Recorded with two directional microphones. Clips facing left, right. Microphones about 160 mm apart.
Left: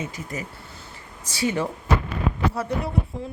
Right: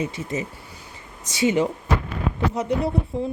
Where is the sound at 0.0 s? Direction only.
20° right (ahead or behind).